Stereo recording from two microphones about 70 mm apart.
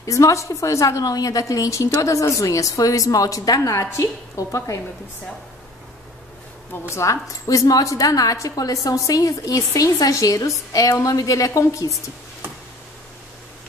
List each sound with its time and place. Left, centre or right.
0.0 s a woman's voice: left
6.7 s speech: left